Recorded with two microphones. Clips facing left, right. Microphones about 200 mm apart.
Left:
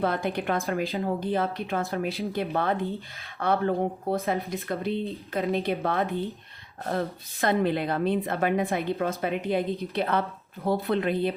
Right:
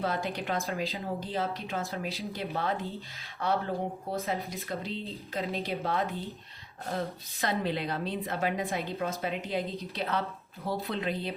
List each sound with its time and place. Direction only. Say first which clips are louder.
0.0 s a woman's voice: left 5 dB; 55° left (ahead or behind)
7.6 s a woman's voice: left 7 dB; 55° left (ahead or behind)